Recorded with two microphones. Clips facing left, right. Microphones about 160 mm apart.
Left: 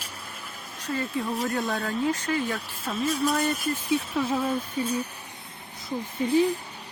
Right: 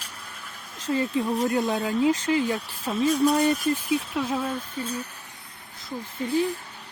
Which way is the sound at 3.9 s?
Centre (ahead or behind).